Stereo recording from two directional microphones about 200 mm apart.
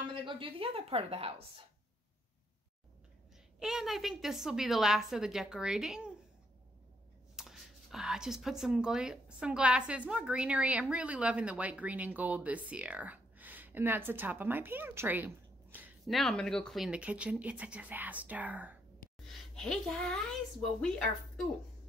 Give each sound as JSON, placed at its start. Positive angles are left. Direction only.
{"t": 0.1, "sound": "a woman's voice", "side_deg": -25}
{"t": 3.5, "sound": "a woman's voice", "side_deg": 0}
{"t": 7.3, "sound": "a child's voice", "side_deg": 0}